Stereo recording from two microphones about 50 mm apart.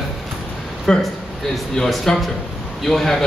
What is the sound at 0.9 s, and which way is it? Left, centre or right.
A man's voice, centre.